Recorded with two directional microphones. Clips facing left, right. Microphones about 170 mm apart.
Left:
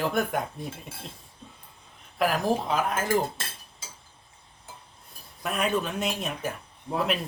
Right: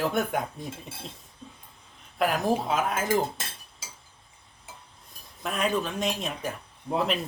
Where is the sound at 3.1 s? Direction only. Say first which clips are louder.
Even; 15° right (ahead or behind).